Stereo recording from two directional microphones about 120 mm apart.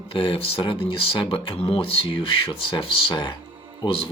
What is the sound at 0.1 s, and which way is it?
Speech, 50° left (ahead or behind).